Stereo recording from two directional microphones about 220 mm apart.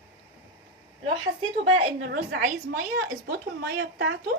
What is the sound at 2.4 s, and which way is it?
Speech, 45° right (ahead or behind).